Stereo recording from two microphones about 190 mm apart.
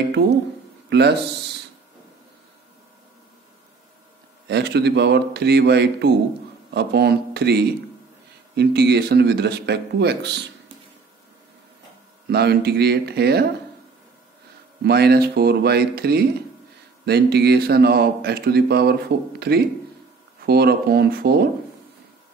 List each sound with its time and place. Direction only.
0.8 s speech: 60° right (ahead or behind)
4.5 s speech: 60° right (ahead or behind)
12.3 s speech: 60° right (ahead or behind)
14.8 s speech: 60° right (ahead or behind)